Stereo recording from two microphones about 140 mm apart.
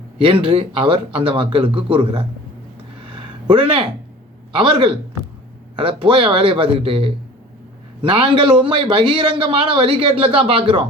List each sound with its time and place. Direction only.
0.2 s a man's voice: 40° right (ahead or behind)
3.2 s a sound: 35° right (ahead or behind)
4.5 s a man's voice: 35° right (ahead or behind)